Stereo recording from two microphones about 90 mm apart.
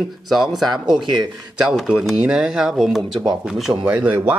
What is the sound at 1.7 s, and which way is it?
Speech, 5° right (ahead or behind).